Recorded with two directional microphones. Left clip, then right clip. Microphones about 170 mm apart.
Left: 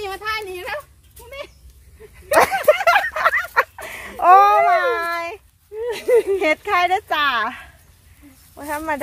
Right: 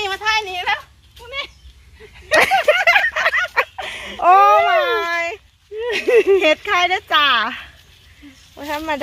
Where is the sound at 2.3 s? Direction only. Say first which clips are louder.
Right 1 dB; 5° left (ahead or behind).